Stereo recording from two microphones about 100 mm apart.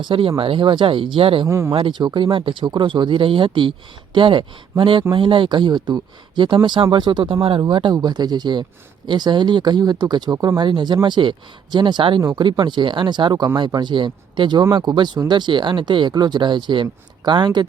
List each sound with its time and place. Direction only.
0.0 s speech: 60° right (ahead or behind)
1.5 s speech: 30° right (ahead or behind)
1.7 s speech: 55° right (ahead or behind)
7.9 s speech: 45° right (ahead or behind)